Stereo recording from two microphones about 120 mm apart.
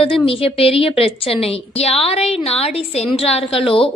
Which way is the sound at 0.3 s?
55° left (ahead or behind).